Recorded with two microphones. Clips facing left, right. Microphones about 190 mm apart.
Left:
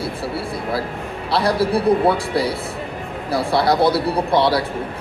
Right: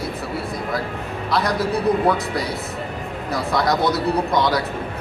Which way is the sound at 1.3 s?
30° left (ahead or behind).